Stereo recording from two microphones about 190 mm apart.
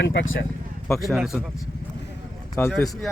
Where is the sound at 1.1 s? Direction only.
Centre (ahead or behind).